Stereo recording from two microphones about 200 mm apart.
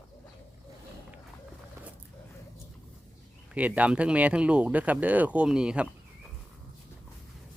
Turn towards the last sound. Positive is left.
turn(degrees=-5)  # may be behind; listen again after turning